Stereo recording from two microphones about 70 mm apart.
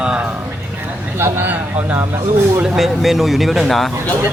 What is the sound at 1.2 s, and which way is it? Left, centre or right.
Speech, right.